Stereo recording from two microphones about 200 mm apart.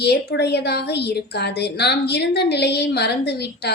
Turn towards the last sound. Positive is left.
turn(degrees=55)  # may be behind; listen again after turning